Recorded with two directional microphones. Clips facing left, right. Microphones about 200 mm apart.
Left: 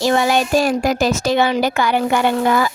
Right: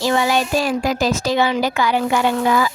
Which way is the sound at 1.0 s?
60° left (ahead or behind).